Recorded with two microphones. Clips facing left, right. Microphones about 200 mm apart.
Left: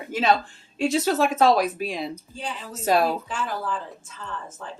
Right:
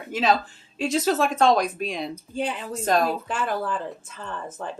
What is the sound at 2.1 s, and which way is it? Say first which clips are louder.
Speech: right 6 dB; 60° right (ahead or behind).